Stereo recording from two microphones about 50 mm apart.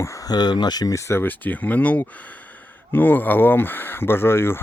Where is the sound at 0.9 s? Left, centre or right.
Left.